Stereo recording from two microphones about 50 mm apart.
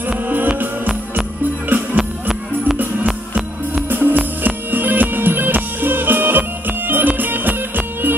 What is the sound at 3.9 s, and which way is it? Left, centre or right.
Music, right.